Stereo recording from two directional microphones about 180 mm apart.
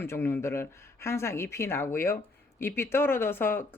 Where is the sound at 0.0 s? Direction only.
15° left (ahead or behind).